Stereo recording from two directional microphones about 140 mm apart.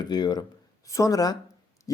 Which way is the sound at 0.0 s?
30° left (ahead or behind).